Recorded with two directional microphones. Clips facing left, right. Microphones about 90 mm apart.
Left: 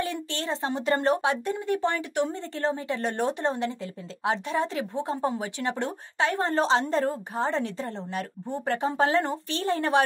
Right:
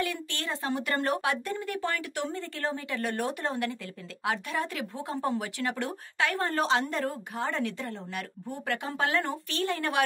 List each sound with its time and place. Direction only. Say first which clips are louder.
0.0 s a woman's voice: left 2 dB; 30° left (ahead or behind)